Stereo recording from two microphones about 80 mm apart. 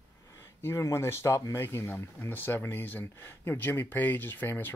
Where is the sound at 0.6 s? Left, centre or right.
Left.